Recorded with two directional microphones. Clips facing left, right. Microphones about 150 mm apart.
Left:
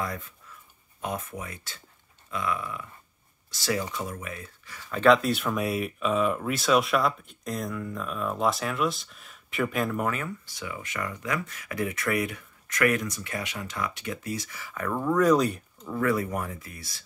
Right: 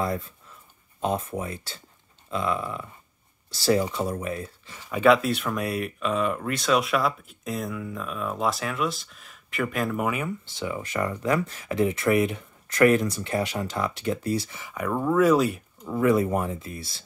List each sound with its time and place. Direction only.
0.0 s speech: 30° right (ahead or behind)
4.7 s speech: 15° right (ahead or behind)
10.4 s speech: 25° right (ahead or behind)
14.6 s speech: 15° right (ahead or behind)
15.9 s speech: 20° right (ahead or behind)